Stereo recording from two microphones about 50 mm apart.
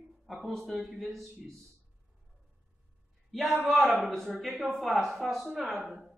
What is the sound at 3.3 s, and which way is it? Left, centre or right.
A man's voice, centre.